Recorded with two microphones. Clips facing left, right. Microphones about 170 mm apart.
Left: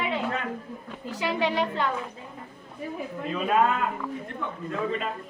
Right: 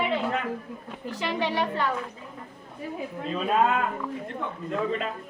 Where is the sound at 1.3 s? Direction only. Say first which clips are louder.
Left 1 dB; 15° left (ahead or behind).